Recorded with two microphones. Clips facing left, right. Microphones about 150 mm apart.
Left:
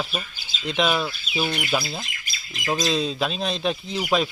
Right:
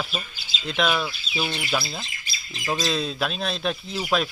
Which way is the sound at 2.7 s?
Centre (ahead or behind).